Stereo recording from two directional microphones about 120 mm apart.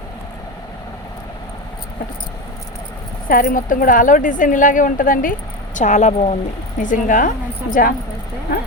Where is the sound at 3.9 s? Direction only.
90° left; by 6.3 s 65° left (ahead or behind).